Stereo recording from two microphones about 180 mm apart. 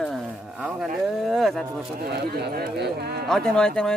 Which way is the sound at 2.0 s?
65° right (ahead or behind).